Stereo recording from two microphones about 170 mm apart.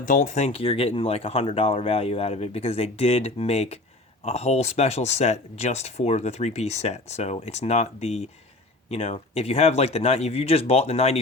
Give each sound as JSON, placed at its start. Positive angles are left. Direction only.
{"t": 0.0, "sound": "speech", "side_deg": 50}